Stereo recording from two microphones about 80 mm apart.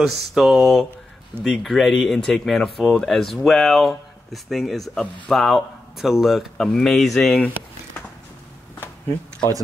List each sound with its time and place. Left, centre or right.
0.0 s speech: centre
7.2 s speech: centre